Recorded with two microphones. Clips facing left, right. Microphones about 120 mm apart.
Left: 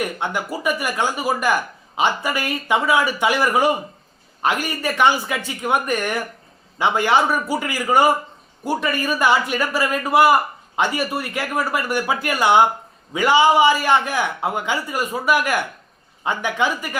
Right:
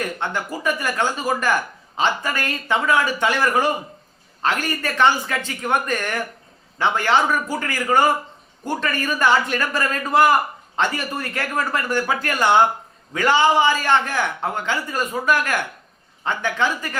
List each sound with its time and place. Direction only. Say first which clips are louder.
0.0 s a man's voice: left 1 dB; 15° left (ahead or behind)